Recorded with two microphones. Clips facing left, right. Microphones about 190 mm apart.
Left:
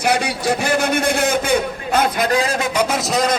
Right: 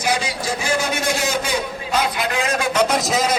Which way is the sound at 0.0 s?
65° left (ahead or behind).